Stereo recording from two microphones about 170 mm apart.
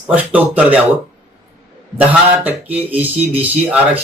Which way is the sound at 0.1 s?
5° right (ahead or behind).